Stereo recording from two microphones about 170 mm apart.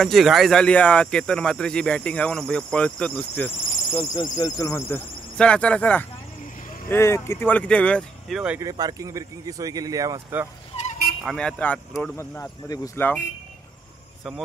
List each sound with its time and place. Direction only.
0.0 s speech: centre (ahead or behind)
3.9 s speech: 25° left (ahead or behind); by 8.4 s 5° left (ahead or behind)
8.5 s speech: 20° right (ahead or behind)
11.2 s speech: 5° left (ahead or behind)